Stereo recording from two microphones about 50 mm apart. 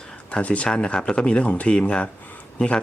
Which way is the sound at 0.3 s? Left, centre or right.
Left.